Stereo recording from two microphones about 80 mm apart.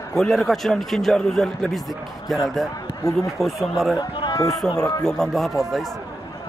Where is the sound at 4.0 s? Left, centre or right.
Left.